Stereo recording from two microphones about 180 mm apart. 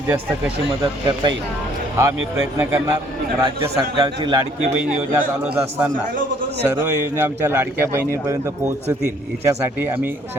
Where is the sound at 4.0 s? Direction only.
25° right (ahead or behind).